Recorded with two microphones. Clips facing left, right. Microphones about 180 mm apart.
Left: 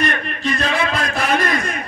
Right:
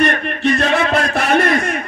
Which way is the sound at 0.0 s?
65° right (ahead or behind).